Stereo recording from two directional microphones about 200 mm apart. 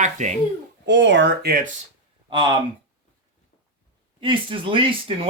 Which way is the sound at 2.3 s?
25° right (ahead or behind).